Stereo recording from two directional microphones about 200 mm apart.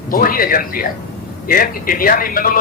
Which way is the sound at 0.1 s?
45° left (ahead or behind).